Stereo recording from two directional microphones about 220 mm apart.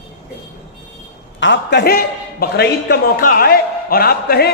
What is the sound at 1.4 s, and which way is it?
A man's voice, 55° left (ahead or behind).